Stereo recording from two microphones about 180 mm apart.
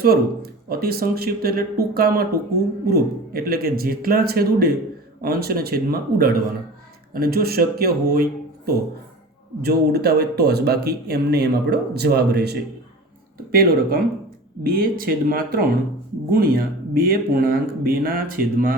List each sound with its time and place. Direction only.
0.0 s speech: 60° right (ahead or behind)